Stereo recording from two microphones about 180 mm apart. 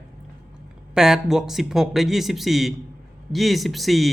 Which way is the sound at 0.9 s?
5° right (ahead or behind).